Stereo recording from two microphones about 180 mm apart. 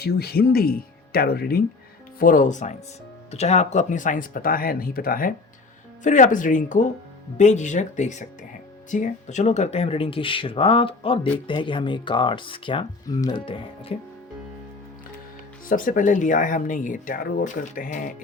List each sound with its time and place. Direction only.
0.0 s speech: 60° left (ahead or behind)
2.1 s speech: 50° left (ahead or behind); by 13.9 s 30° left (ahead or behind)
15.6 s speech: 50° left (ahead or behind)